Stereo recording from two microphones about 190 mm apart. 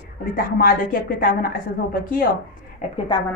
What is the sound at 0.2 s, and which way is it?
A woman's voice, 50° left (ahead or behind).